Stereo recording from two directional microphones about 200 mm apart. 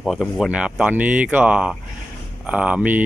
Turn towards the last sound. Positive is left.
turn(degrees=-5)  # may be behind; listen again after turning